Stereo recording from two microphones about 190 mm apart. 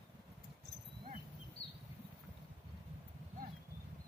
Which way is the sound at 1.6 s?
70° left (ahead or behind).